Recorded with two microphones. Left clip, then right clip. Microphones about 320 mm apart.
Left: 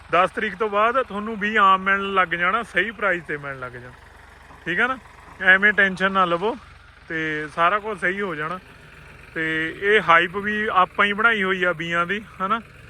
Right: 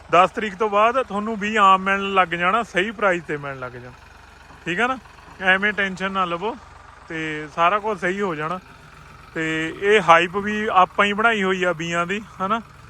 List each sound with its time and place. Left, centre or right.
0.1 s speech: centre